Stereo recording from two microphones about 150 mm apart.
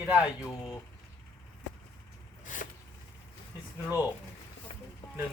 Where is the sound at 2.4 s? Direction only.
60° left (ahead or behind).